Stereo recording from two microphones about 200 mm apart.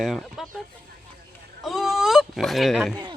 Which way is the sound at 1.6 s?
Centre (ahead or behind).